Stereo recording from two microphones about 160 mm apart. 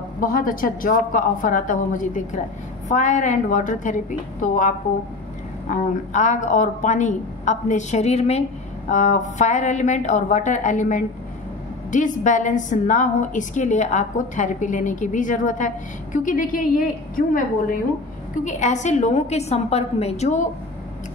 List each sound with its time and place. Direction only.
0.2 s a woman's voice: 60° left (ahead or behind)
18.4 s a woman's voice: 50° left (ahead or behind)